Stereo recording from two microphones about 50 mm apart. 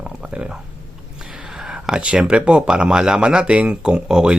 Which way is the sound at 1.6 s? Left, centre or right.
Centre.